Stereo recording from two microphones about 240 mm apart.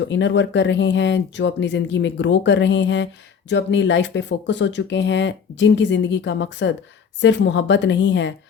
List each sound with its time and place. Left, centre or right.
0.1 s speech: left